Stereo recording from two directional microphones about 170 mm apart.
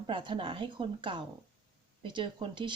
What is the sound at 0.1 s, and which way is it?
Speech, 30° right (ahead or behind).